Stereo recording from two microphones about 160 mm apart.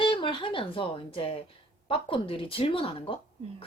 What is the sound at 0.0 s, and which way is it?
A woman's voice, 30° left (ahead or behind).